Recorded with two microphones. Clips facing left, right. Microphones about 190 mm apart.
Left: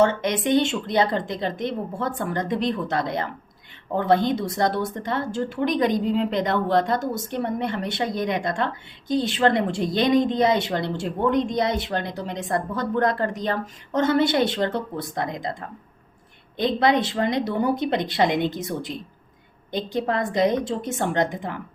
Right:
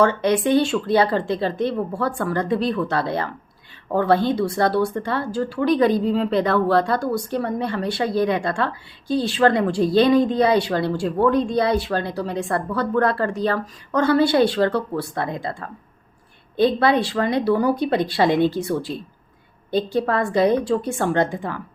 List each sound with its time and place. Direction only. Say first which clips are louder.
0.0 s speech: right 3 dB; 20° left (ahead or behind)